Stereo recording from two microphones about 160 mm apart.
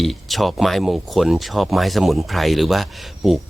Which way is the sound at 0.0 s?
Centre (ahead or behind).